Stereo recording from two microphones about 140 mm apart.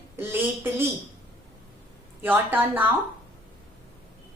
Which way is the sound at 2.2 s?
15° right (ahead or behind).